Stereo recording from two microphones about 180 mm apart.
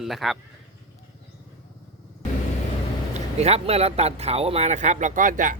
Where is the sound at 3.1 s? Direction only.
35° right (ahead or behind).